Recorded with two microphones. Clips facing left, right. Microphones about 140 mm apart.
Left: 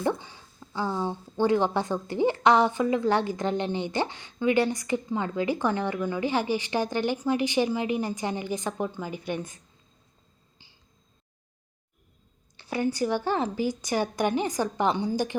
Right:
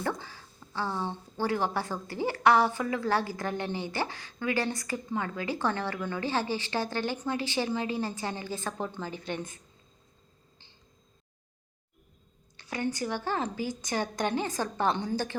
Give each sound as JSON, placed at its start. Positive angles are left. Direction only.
{"t": 0.2, "sound": "a woman's voice", "side_deg": 20}
{"t": 12.5, "sound": "a sound", "side_deg": 15}
{"t": 13.0, "sound": "a woman's voice", "side_deg": 15}